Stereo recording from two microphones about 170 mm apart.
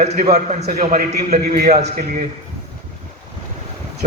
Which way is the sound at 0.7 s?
60° right (ahead or behind).